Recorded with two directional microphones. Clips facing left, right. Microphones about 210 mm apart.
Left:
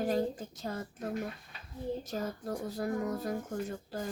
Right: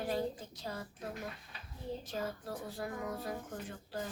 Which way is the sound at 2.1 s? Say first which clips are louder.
Left 4 dB; 45° left (ahead or behind).